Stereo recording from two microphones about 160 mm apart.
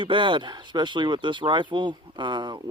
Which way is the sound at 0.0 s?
30° right (ahead or behind).